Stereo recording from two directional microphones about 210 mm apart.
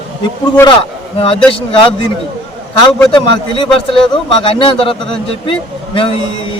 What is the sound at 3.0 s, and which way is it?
A man's voice, 25° left (ahead or behind).